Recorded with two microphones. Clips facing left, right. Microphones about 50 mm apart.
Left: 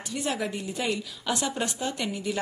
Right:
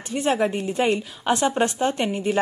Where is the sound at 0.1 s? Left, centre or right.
Right.